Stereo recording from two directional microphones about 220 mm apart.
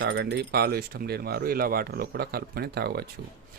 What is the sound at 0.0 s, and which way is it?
A man's voice, 50° right (ahead or behind).